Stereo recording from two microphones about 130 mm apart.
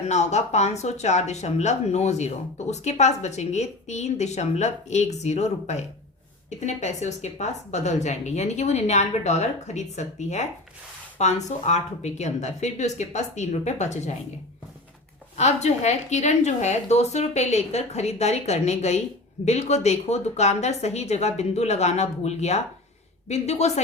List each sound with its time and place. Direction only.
0.1 s speech: 60° left (ahead or behind)
15.4 s speech: 60° left (ahead or behind)